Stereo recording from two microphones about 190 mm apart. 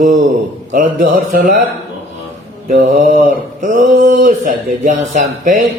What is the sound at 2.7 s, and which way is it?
Mantra, 45° right (ahead or behind).